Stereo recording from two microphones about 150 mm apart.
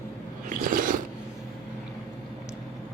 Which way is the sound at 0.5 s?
65° right (ahead or behind).